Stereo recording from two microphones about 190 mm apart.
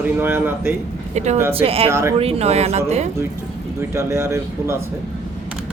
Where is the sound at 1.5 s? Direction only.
30° right (ahead or behind).